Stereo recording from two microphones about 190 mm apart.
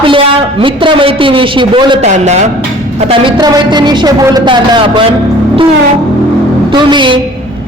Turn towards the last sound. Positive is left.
turn(degrees=-25)  # may be behind; listen again after turning